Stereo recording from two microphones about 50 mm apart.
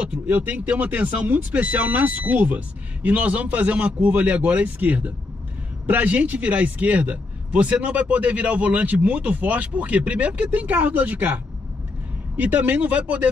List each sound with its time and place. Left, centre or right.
0.3 s speech: right